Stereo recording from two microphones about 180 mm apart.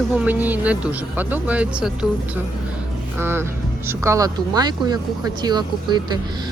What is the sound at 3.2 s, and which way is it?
Speech, 15° right (ahead or behind).